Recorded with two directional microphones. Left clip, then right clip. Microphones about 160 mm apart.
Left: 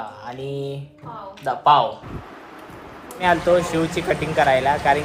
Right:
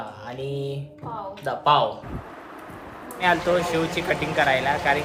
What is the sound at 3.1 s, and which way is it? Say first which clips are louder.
Speech: left 4 dB; 10° right (ahead or behind).